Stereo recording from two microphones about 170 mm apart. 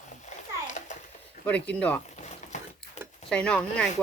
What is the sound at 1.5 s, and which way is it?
Speech, 10° left (ahead or behind).